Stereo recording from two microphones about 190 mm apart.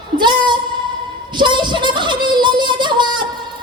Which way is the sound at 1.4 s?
25° right (ahead or behind).